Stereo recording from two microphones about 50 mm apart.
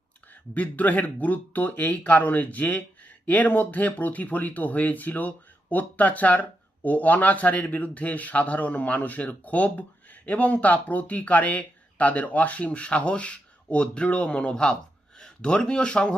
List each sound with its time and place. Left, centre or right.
0.5 s a man's voice: left